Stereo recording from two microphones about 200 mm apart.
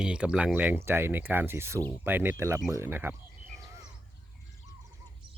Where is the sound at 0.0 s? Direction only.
5° right (ahead or behind).